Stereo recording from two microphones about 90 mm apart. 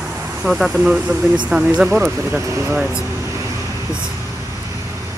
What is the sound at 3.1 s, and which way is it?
Vehicle, 35° right (ahead or behind).